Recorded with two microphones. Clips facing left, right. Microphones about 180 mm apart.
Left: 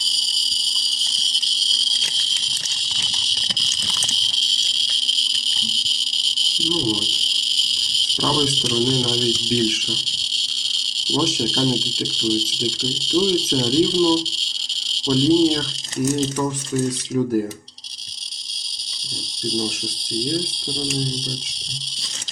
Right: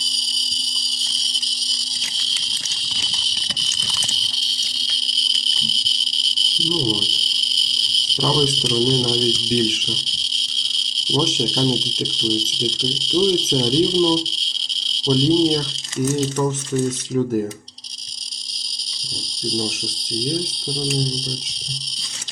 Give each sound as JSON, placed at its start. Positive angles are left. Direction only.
{"t": 6.6, "sound": "speech", "side_deg": 0}
{"t": 7.8, "sound": "a sound", "side_deg": 0}
{"t": 8.6, "sound": "speech", "side_deg": 0}
{"t": 11.1, "sound": "speech", "side_deg": 5}
{"t": 19.5, "sound": "speech", "side_deg": 0}